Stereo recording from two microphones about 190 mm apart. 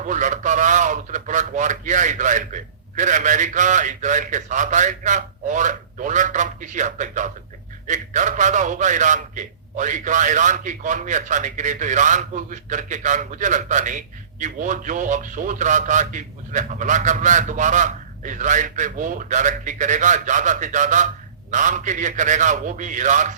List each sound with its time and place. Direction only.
0.0 s a man's voice: 40° right (ahead or behind)